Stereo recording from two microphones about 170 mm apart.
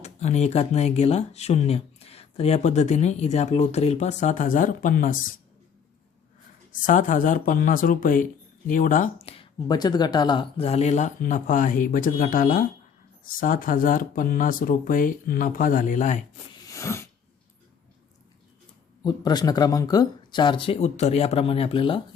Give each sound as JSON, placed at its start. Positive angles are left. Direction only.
{"t": 0.0, "sound": "speech", "side_deg": 40}
{"t": 6.8, "sound": "speech", "side_deg": 50}
{"t": 16.6, "sound": "a sound", "side_deg": 15}
{"t": 19.0, "sound": "speech", "side_deg": 25}